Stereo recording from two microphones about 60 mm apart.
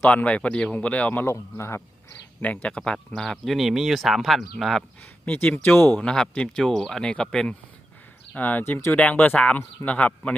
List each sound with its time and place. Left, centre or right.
0.1 s speech: left
1.1 s speech: left
2.4 s speech: left; by 4.4 s centre
5.2 s speech: left
8.4 s speech: left